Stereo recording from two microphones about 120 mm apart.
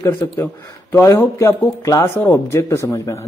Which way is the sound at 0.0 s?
25° left (ahead or behind).